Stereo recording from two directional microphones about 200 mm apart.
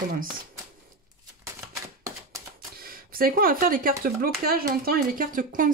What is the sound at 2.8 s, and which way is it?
Speech, 45° right (ahead or behind).